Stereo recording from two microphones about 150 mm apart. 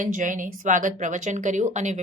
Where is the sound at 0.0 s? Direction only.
60° right (ahead or behind).